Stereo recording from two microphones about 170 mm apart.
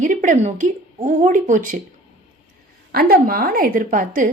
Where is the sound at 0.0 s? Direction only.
50° right (ahead or behind).